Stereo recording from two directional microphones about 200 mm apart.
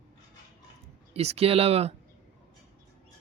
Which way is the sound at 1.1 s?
30° right (ahead or behind).